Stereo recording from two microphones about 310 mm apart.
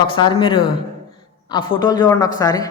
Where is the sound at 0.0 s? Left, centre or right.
Centre.